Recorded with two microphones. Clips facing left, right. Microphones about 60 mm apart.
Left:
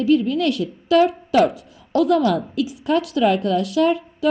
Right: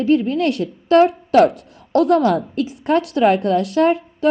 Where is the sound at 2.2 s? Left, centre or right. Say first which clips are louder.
Right 2 dB; right.